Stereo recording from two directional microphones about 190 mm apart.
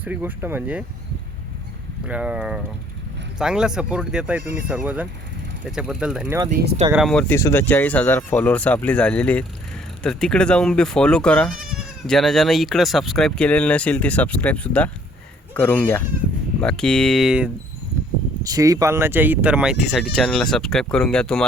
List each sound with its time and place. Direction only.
0.0 s speech: 10° right (ahead or behind)
2.0 s speech: 5° right (ahead or behind)
6.5 s speech: 60° right (ahead or behind)
6.9 s speech: centre (ahead or behind)
18.4 s speech: 20° right (ahead or behind); by 21.4 s 5° left (ahead or behind)